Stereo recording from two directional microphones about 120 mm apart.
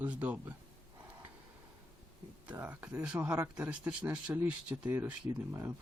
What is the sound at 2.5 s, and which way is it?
Speech, 15° right (ahead or behind).